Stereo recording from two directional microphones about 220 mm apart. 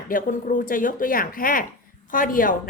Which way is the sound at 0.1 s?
35° left (ahead or behind).